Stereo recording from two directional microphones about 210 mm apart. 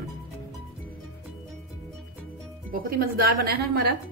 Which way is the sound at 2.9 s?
45° right (ahead or behind).